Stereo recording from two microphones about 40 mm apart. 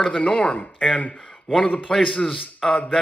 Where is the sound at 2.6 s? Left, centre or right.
Centre.